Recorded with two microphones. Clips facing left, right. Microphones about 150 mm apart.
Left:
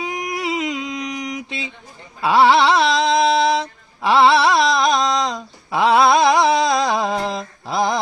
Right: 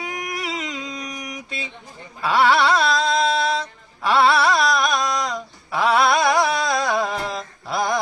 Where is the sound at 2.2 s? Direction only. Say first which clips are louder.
Left 4 dB; 20° left (ahead or behind).